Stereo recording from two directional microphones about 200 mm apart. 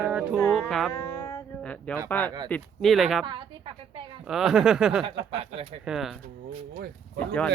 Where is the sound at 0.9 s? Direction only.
15° left (ahead or behind).